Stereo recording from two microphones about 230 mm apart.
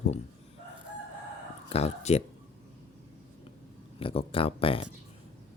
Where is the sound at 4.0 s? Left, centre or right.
Left.